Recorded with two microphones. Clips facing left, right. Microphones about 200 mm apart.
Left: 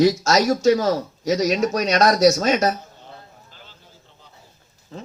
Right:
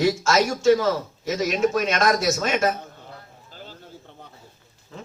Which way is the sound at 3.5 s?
45° right (ahead or behind).